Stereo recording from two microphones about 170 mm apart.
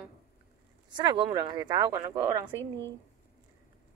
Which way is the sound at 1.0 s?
25° right (ahead or behind).